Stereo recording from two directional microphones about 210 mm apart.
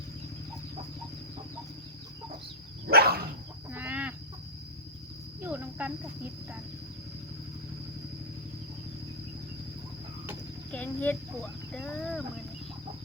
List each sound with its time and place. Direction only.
2.8 s dog: 50° right (ahead or behind)
3.7 s chicken: 10° right (ahead or behind)
5.4 s cricket: 10° right (ahead or behind)
10.7 s speech: 5° left (ahead or behind)